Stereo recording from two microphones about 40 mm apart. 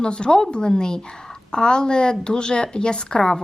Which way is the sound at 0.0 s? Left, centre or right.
Left.